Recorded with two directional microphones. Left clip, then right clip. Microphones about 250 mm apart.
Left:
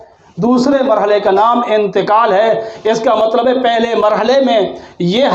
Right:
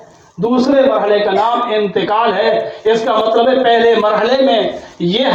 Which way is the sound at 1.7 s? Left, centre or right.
Left.